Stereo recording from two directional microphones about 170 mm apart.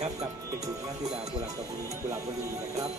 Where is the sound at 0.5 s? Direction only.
20° right (ahead or behind).